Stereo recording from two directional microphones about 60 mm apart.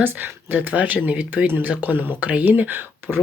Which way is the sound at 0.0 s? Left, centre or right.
Right.